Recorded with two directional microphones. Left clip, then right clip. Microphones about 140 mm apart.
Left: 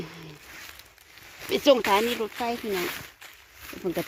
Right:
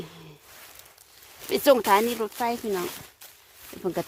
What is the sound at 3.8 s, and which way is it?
Speech, 25° right (ahead or behind).